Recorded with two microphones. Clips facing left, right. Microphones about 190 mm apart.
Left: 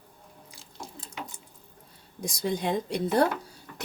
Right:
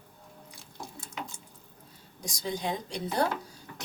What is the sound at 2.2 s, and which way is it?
Speech, 55° left (ahead or behind).